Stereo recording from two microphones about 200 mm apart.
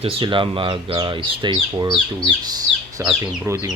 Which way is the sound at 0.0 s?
25° right (ahead or behind).